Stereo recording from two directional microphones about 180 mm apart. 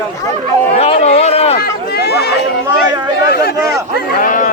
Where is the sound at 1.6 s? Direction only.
65° left (ahead or behind).